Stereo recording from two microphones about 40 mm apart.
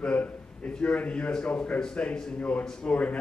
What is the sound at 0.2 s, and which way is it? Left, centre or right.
A man's voice, left.